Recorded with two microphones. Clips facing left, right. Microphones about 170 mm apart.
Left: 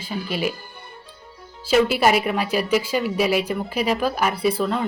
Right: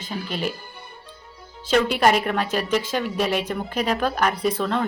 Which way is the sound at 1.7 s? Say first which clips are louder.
Left 1 dB; 5° left (ahead or behind).